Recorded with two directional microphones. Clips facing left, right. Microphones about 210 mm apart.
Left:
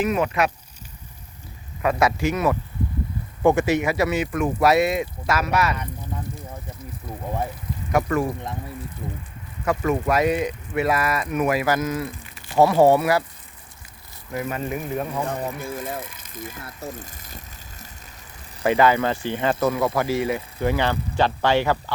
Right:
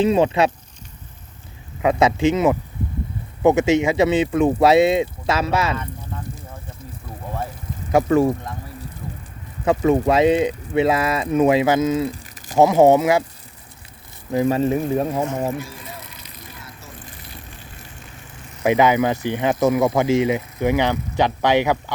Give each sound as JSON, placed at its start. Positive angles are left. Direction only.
{"t": 0.0, "sound": "speech", "side_deg": -25}
{"t": 1.8, "sound": "speech", "side_deg": -20}
{"t": 7.9, "sound": "speech", "side_deg": -25}
{"t": 9.6, "sound": "speech", "side_deg": -25}
{"t": 12.1, "sound": "a sound", "side_deg": -40}
{"t": 12.5, "sound": "speech", "side_deg": -20}
{"t": 14.3, "sound": "speech", "side_deg": -30}
{"t": 15.6, "sound": "vehicle", "side_deg": 50}
{"t": 18.6, "sound": "speech", "side_deg": -15}